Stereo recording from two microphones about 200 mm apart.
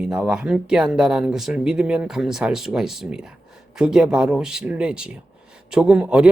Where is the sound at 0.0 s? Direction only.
5° right (ahead or behind).